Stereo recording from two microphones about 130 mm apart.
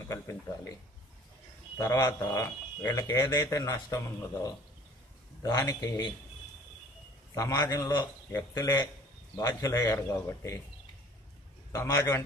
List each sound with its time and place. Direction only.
0.1 s speech: 25° left (ahead or behind)
1.8 s a man's voice: 25° left (ahead or behind)
7.3 s speech: 25° left (ahead or behind)
11.7 s speech: 25° left (ahead or behind)